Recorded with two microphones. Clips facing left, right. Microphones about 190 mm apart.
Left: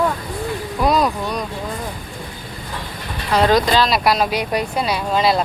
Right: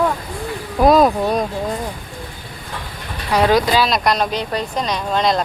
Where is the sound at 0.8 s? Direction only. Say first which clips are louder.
Right 6 dB; 50° right (ahead or behind).